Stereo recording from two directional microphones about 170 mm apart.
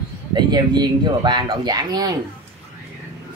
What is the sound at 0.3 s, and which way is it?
Speech, 25° right (ahead or behind).